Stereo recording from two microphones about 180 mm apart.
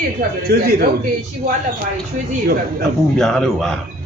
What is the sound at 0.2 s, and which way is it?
Speech, 60° right (ahead or behind).